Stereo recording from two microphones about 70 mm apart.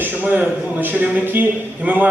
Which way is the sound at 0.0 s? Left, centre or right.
Right.